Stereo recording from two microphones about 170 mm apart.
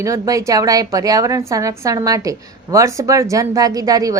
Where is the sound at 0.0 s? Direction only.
20° right (ahead or behind).